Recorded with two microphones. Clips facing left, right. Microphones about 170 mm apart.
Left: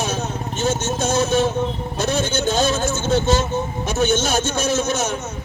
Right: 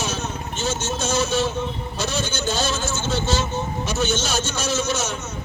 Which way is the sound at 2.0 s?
55° left (ahead or behind).